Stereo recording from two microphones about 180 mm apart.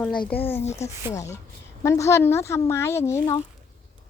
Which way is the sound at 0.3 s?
10° left (ahead or behind).